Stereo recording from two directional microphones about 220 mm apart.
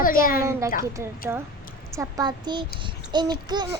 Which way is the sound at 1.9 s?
20° right (ahead or behind).